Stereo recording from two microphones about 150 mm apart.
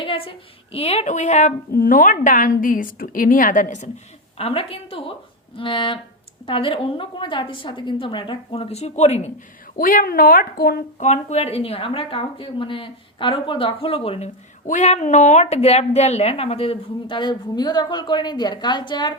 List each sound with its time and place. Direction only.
0.0 s a woman's voice: 35° left (ahead or behind); by 1.5 s 50° left (ahead or behind)
1.7 s a woman's voice: 70° left (ahead or behind)
4.4 s a woman's voice: 40° left (ahead or behind)
9.7 s a woman's voice: 70° left (ahead or behind)
11.0 s a woman's voice: 50° left (ahead or behind); by 19.1 s 30° left (ahead or behind)